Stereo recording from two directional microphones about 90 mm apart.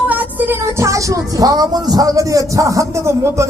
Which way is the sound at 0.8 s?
35° right (ahead or behind).